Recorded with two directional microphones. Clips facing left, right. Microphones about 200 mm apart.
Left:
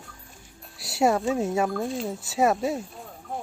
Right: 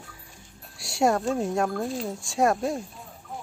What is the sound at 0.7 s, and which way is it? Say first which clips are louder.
Speech: left 1 dB; centre (ahead or behind).